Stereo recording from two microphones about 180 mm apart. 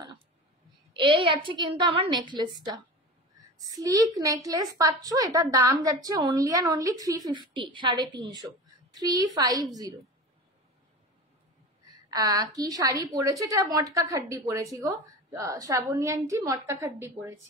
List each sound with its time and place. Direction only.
0.9 s a woman's voice: 30° right (ahead or behind)
12.1 s a woman's voice: 20° right (ahead or behind)